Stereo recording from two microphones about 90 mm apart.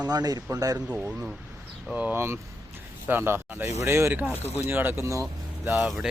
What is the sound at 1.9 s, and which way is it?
Speech, 20° right (ahead or behind).